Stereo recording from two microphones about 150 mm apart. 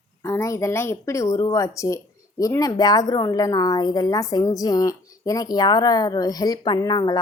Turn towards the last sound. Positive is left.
turn(degrees=25)  # may be behind; listen again after turning